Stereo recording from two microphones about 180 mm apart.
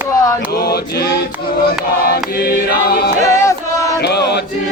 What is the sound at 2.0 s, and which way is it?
Choir, 55° left (ahead or behind).